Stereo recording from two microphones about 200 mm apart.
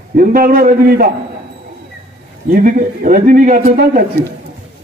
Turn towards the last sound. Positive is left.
turn(degrees=-45)  # may be behind; listen again after turning